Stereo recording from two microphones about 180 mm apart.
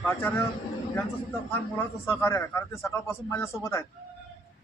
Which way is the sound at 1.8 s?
15° left (ahead or behind).